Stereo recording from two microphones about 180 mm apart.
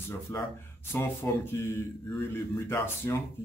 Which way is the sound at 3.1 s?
15° left (ahead or behind).